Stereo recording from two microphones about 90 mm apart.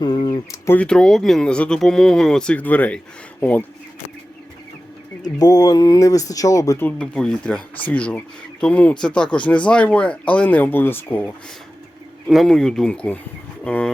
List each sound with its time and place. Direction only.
0.0 s a sound: 60° left (ahead or behind)
0.5 s speech: 30° left (ahead or behind)
0.8 s speech: 10° left (ahead or behind)
5.4 s speech: 45° left (ahead or behind)
6.7 s speech: 15° left (ahead or behind)
12.3 s speech: 5° left (ahead or behind)